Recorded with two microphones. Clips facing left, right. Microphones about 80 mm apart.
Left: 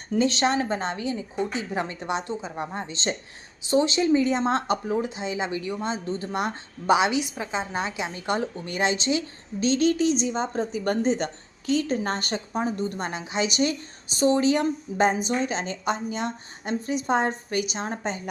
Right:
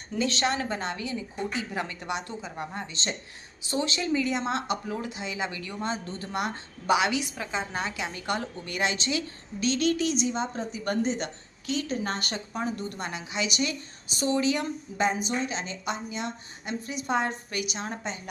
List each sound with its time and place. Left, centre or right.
0.2 s a woman's voice: left
17.9 s speech: left